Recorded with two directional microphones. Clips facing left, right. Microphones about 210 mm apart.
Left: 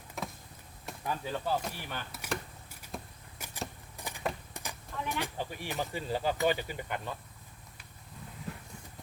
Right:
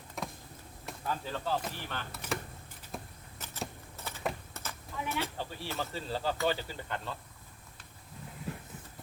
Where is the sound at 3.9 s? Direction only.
15° left (ahead or behind).